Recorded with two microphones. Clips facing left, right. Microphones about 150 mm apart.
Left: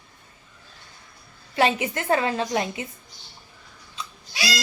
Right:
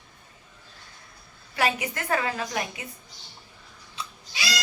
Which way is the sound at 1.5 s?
25° left (ahead or behind).